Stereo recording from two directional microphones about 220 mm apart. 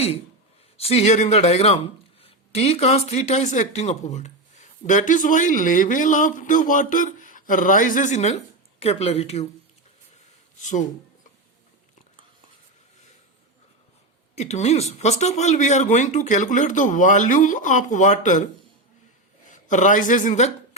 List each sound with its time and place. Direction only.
0.8 s speech: 25° left (ahead or behind)
10.6 s speech: 35° left (ahead or behind)
14.3 s speech: 30° left (ahead or behind)
19.5 s speech: 35° left (ahead or behind)